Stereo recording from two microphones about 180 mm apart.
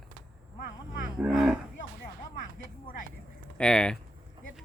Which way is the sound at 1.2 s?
Centre (ahead or behind).